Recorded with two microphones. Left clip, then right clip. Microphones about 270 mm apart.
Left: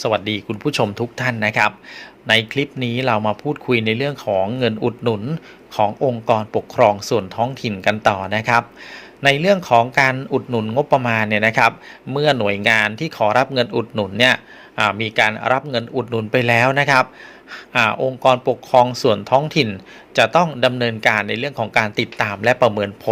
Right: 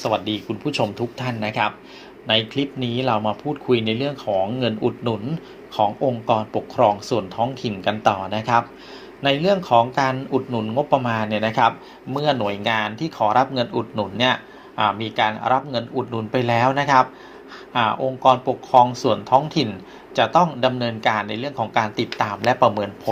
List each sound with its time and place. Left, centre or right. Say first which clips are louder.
0.0 s speech: left 3 dB; left